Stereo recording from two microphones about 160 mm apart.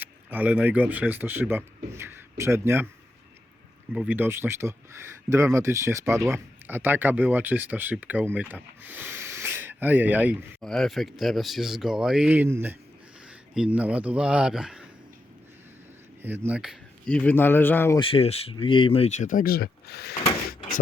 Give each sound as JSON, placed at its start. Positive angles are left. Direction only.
{"t": 0.0, "sound": "speech", "side_deg": -10}
{"t": 3.9, "sound": "speech", "side_deg": -10}
{"t": 10.6, "sound": "speech", "side_deg": 5}
{"t": 16.2, "sound": "speech", "side_deg": -10}
{"t": 17.1, "sound": "a man's voice", "side_deg": 10}
{"t": 18.0, "sound": "speech", "side_deg": 35}